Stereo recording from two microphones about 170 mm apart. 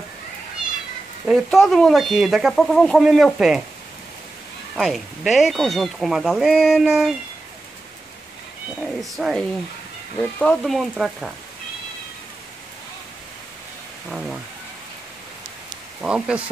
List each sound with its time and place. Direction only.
1.2 s speech: centre (ahead or behind)
4.7 s speech: centre (ahead or behind)
8.8 s speech: centre (ahead or behind)
10.4 s speech: 5° left (ahead or behind)
14.0 s speech: centre (ahead or behind)
16.0 s speech: 5° right (ahead or behind)